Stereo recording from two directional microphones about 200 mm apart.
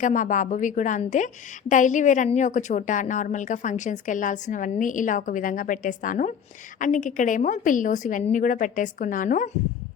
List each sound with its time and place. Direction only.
0.0 s a woman's voice: 40° left (ahead or behind)